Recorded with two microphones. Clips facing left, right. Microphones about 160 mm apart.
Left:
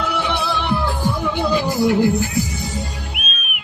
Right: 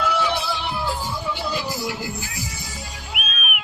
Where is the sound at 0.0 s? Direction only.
60° left (ahead or behind).